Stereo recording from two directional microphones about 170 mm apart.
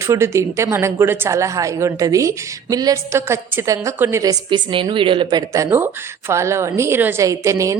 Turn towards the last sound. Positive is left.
turn(degrees=-20)  # may be behind; listen again after turning